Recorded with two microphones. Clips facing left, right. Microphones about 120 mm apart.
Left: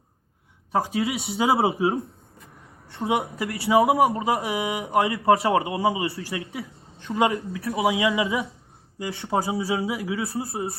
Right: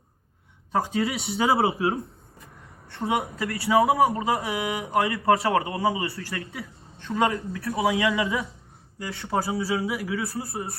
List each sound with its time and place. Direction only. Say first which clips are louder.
0.7 s a man's voice: left 1 dB; 10° left (ahead or behind)
1.1 s speech: left 2 dB; 25° left (ahead or behind)
1.8 s speech: left 2 dB; centre (ahead or behind)
2.9 s a man's voice: left 1 dB; 25° left (ahead or behind)